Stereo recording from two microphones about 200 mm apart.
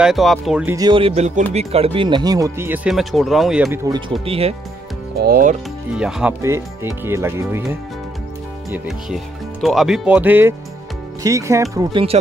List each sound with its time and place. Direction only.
0.0 s speech: centre (ahead or behind)
0.7 s speech: 25° right (ahead or behind); by 3.8 s 5° right (ahead or behind)
4.2 s speech: 30° right (ahead or behind)
5.2 s speech: 45° right (ahead or behind)
5.9 s speech: 5° right (ahead or behind)
8.7 s speech: centre (ahead or behind); by 12.2 s 25° right (ahead or behind)